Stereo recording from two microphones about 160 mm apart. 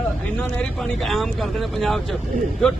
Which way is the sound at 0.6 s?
Centre (ahead or behind).